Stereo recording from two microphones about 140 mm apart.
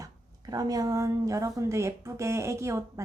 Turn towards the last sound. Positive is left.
turn(degrees=-20)  # may be behind; listen again after turning